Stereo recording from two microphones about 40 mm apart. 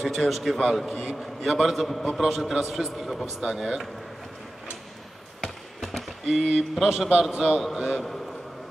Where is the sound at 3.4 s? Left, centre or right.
Centre.